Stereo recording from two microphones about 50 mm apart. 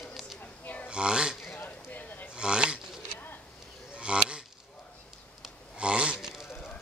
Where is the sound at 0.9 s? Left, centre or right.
Centre.